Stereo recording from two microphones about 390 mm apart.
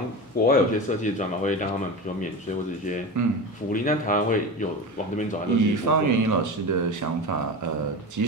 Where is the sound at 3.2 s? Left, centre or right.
Right.